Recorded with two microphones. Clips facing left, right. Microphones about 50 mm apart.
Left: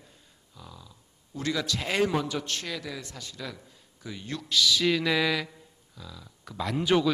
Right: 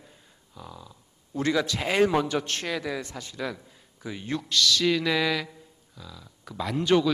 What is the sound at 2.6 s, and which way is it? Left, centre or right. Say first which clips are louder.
Speech: right 6 dB; centre.